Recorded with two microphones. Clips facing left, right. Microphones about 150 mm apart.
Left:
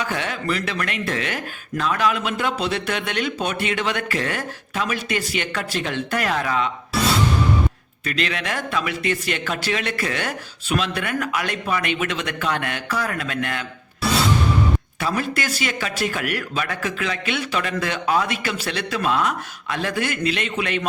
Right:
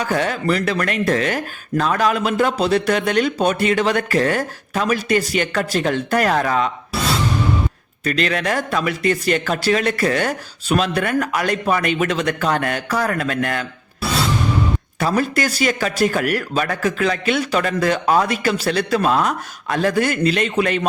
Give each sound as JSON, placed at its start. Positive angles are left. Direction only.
{"t": 0.0, "sound": "speech", "side_deg": -40}
{"t": 8.0, "sound": "speech", "side_deg": -40}
{"t": 14.9, "sound": "speech", "side_deg": -40}